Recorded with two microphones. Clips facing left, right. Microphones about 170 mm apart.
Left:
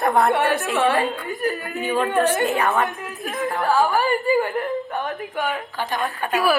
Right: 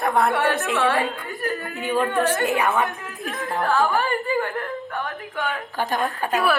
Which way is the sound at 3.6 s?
10° left (ahead or behind).